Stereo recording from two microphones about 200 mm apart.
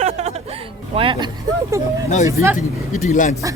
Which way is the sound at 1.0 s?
25° right (ahead or behind).